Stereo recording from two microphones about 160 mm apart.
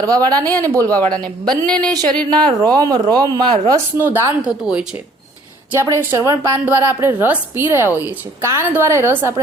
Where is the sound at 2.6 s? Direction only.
25° right (ahead or behind).